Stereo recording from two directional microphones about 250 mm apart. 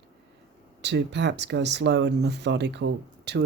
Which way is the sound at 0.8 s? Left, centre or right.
Right.